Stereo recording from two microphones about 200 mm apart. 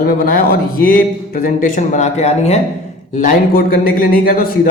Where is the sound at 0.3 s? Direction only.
45° left (ahead or behind).